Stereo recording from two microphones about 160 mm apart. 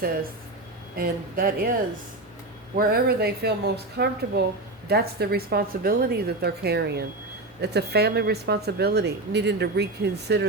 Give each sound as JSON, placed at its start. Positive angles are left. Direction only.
{"t": 0.9, "sound": "speech", "side_deg": -65}
{"t": 2.7, "sound": "a woman's voice", "side_deg": -75}
{"t": 4.9, "sound": "a woman's voice", "side_deg": -80}